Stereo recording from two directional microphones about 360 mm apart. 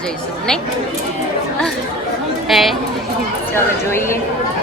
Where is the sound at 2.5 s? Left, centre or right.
Centre.